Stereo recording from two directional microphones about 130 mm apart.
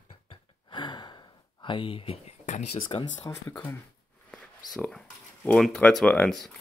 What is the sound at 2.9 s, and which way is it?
Speech, 50° left (ahead or behind).